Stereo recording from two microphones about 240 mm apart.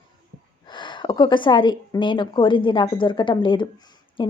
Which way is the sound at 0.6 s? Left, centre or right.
Centre.